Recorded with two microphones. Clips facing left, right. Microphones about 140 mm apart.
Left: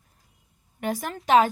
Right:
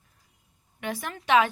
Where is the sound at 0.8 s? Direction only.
40° left (ahead or behind).